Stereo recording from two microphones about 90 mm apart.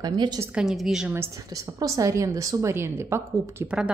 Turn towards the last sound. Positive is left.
turn(degrees=-10)  # may be behind; listen again after turning